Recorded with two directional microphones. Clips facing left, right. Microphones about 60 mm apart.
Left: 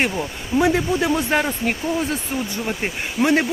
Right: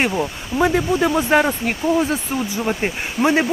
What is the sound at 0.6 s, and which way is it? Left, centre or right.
Speech, centre.